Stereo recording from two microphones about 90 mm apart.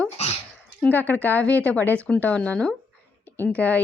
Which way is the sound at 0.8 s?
15° left (ahead or behind).